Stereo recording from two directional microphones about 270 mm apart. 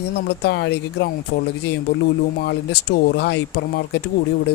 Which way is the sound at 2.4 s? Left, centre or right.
Left.